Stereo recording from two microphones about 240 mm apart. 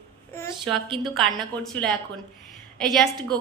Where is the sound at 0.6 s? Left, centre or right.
Centre.